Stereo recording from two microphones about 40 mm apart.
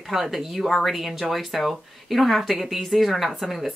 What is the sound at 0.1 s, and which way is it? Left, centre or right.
Speech, centre.